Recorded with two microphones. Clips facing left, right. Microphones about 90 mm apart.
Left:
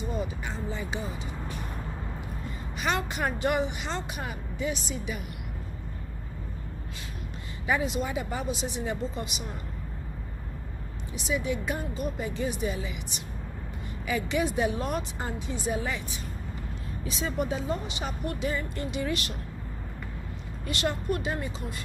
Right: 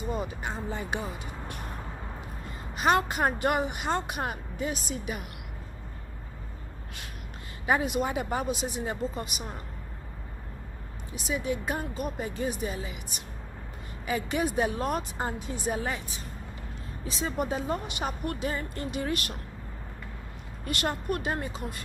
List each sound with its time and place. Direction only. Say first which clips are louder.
0.0 s speech: right 1 dB; 45° right (ahead or behind)
2.8 s speech: right 5 dB; 45° right (ahead or behind)
7.6 s speech: right 2 dB; 50° right (ahead or behind)
11.1 s speech: left 1 dB; 40° right (ahead or behind)
20.6 s speech: left 1 dB; 50° right (ahead or behind)